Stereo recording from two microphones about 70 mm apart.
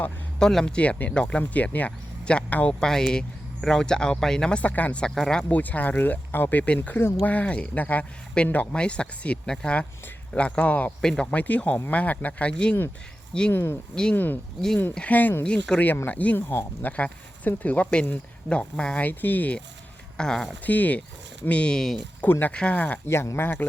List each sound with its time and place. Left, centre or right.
0.3 s speech: centre
0.8 s speech: left
2.8 s speech: centre
5.5 s speech: left
13.5 s speech: left
13.9 s speech: centre; by 15.4 s left
15.4 s speech: centre
20.1 s speech: centre
20.7 s speech: left
22.3 s speech: left
23.0 s speech: left